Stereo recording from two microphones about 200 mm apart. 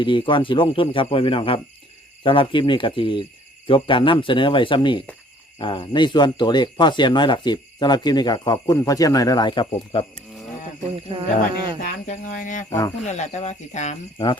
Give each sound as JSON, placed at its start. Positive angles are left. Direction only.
{"t": 0.0, "sound": "speech", "side_deg": 25}
{"t": 10.9, "sound": "speech", "side_deg": -25}
{"t": 11.8, "sound": "speech", "side_deg": 40}